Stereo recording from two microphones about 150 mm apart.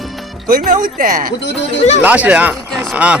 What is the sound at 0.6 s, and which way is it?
Speech, 65° right (ahead or behind).